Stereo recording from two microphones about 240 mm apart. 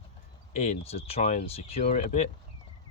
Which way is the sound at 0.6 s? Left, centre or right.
Left.